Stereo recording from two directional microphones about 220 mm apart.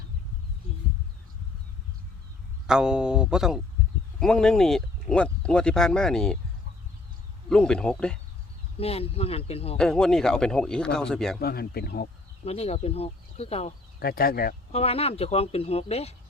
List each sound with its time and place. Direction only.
2.6 s speech: 5° right (ahead or behind)
7.5 s speech: 5° left (ahead or behind)
8.8 s speech: 25° left (ahead or behind)
9.7 s speech: 5° left (ahead or behind)
11.3 s speech: 45° left (ahead or behind)
12.5 s speech: 30° left (ahead or behind)
14.0 s speech: 45° left (ahead or behind)
14.7 s speech: 25° left (ahead or behind)